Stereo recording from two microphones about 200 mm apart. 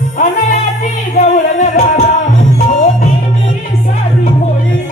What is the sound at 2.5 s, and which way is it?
Music, 40° left (ahead or behind).